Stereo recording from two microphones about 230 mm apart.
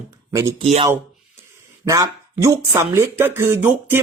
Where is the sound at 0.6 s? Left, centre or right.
Right.